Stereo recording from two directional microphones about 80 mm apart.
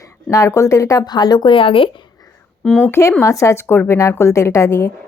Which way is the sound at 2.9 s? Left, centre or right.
Left.